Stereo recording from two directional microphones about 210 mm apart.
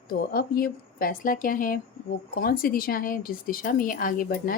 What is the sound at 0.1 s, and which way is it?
A woman's voice, 45° left (ahead or behind).